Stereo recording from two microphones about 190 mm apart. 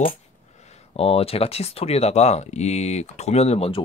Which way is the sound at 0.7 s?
30° left (ahead or behind).